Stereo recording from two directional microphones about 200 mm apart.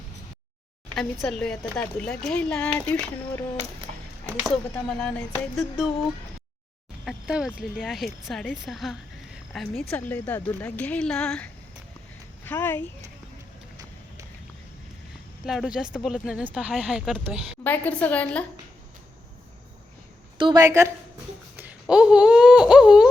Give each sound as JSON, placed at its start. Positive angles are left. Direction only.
{"t": 0.9, "sound": "speech", "side_deg": 0}
{"t": 4.4, "sound": "speech", "side_deg": 5}
{"t": 7.0, "sound": "speech", "side_deg": 0}
{"t": 12.5, "sound": "speech", "side_deg": 10}
{"t": 15.4, "sound": "speech", "side_deg": 0}
{"t": 17.6, "sound": "speech", "side_deg": 10}
{"t": 20.4, "sound": "a woman's voice", "side_deg": -20}
{"t": 21.5, "sound": "a sound", "side_deg": -10}